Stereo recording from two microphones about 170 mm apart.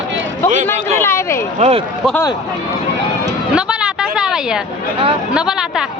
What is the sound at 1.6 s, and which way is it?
Speech, 35° right (ahead or behind).